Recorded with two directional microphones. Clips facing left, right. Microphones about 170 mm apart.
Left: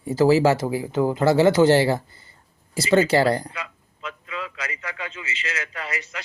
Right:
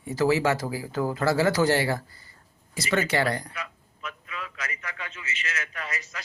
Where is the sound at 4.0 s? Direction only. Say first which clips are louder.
Left 5 dB; 90° left.